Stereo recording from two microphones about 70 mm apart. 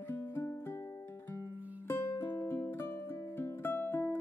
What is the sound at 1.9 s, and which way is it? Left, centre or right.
Music, left.